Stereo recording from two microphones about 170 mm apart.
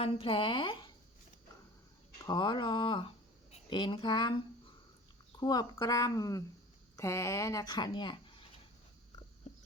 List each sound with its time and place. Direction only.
0.0 s a woman's voice: 35° left (ahead or behind)
2.2 s speech: 25° left (ahead or behind)